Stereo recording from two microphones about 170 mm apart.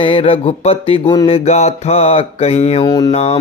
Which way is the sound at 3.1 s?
35° left (ahead or behind).